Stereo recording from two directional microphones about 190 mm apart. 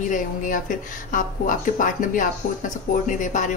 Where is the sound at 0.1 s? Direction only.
45° left (ahead or behind).